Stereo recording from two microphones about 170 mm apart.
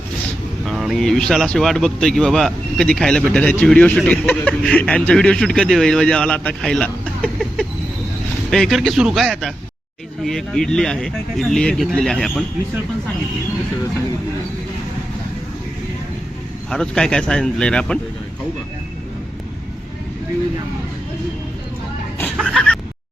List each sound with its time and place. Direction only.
0.7 s speech: centre (ahead or behind)
16.6 s speech: 5° left (ahead or behind)
22.4 s a sound: 5° left (ahead or behind)